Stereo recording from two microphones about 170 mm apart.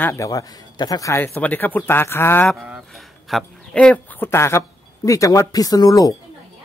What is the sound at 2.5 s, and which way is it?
Speech, centre (ahead or behind).